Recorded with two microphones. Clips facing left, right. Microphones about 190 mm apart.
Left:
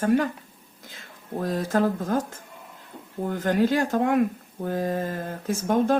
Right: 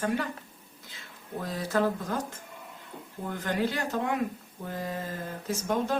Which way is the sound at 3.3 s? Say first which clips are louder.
Left 7 dB; 45° left (ahead or behind).